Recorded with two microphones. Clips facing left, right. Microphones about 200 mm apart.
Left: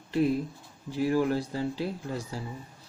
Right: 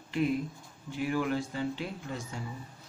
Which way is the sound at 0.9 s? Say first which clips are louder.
Left 5 dB; 35° left (ahead or behind).